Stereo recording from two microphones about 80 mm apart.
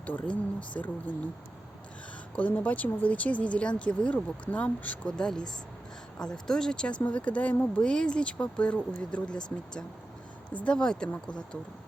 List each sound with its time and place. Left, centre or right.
0.0 s speech: centre
2.3 s speech: centre